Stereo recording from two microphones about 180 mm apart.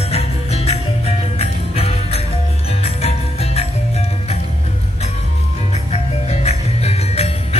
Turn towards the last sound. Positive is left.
turn(degrees=35)  # may be behind; listen again after turning